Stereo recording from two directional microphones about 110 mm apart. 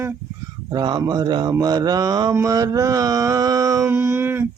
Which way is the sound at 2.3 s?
30° right (ahead or behind).